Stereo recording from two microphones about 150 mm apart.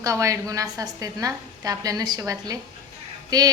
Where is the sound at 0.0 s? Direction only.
20° right (ahead or behind).